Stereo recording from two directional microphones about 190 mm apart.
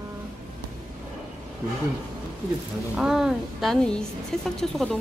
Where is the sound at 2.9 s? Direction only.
5° right (ahead or behind).